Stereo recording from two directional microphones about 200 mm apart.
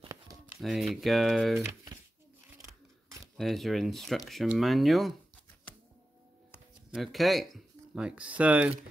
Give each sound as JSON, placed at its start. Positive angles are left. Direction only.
{"t": 0.0, "sound": "a sound", "side_deg": -15}
{"t": 0.6, "sound": "speech", "side_deg": 0}
{"t": 1.6, "sound": "speech", "side_deg": -10}
{"t": 3.3, "sound": "speech", "side_deg": 0}
{"t": 6.9, "sound": "speech", "side_deg": 0}